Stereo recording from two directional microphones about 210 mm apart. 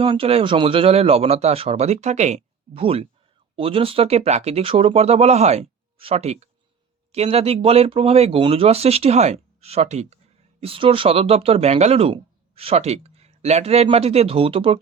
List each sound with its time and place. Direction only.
0.0 s speech: 25° right (ahead or behind)